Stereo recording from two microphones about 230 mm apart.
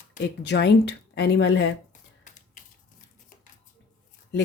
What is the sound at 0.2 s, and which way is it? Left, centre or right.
A woman's voice, left.